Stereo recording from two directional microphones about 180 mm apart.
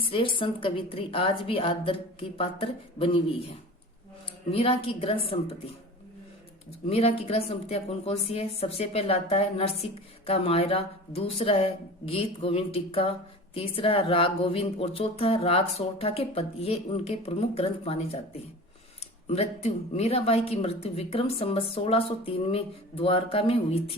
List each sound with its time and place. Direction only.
0.0 s a woman's voice: 30° left (ahead or behind)
4.5 s speech: 30° left (ahead or behind)
6.7 s speech: 35° left (ahead or behind)
19.3 s speech: 35° left (ahead or behind)